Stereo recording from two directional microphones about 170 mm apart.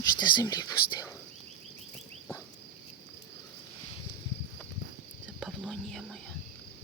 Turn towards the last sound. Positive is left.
turn(degrees=0)  # may be behind; listen again after turning